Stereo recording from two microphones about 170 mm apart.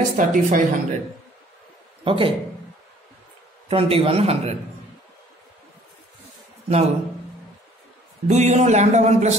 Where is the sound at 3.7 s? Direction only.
35° right (ahead or behind).